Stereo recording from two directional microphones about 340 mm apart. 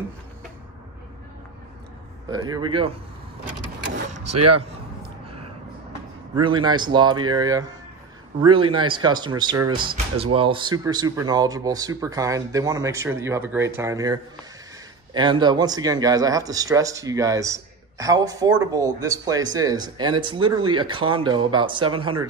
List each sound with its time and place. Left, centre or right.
2.3 s speech: centre
4.3 s speech: right
6.3 s speech: centre